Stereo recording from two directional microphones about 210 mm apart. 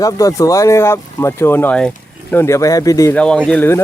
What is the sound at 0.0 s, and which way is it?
Speech, 15° left (ahead or behind).